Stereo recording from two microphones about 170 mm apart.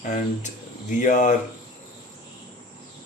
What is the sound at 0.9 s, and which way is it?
Speech, 50° left (ahead or behind).